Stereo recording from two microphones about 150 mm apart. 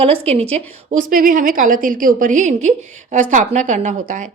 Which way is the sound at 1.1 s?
65° right (ahead or behind).